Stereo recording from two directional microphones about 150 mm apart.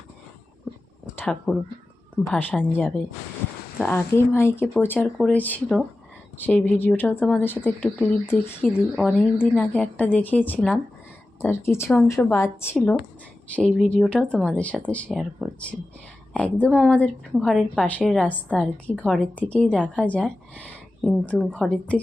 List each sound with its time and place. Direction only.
1.1 s a woman's voice: 5° left (ahead or behind)
4.9 s speech: centre (ahead or behind)
5.3 s a woman's voice: 10° left (ahead or behind)
9.0 s a woman's voice: 5° left (ahead or behind)
15.1 s speech: centre (ahead or behind)
16.3 s a woman's voice: 10° left (ahead or behind)